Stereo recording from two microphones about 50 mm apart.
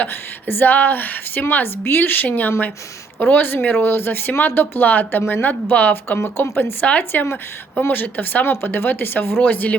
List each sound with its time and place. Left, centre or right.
0.4 s a woman's voice: left
6.1 s speech: left
6.8 s speech: left
7.8 s speech: left
9.4 s a woman's voice: left